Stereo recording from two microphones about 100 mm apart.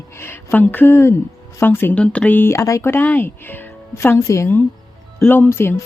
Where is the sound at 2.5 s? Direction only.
30° left (ahead or behind).